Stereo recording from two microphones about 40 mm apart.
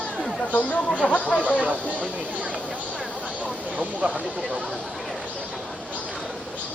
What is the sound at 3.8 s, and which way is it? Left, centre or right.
Speech, right.